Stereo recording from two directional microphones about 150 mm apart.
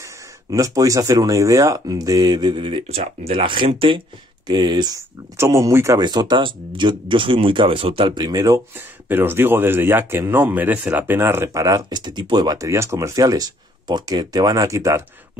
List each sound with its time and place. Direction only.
0.5 s speech: 25° right (ahead or behind)
5.9 s speech: 30° right (ahead or behind)